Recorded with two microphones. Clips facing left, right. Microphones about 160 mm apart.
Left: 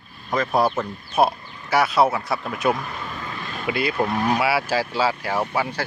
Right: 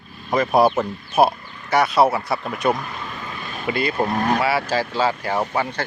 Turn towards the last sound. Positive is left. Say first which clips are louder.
# right 1 dB
turn(degrees=5)  # may be behind; listen again after turning